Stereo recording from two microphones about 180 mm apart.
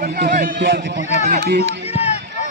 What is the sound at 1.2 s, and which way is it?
Speech, 60° right (ahead or behind).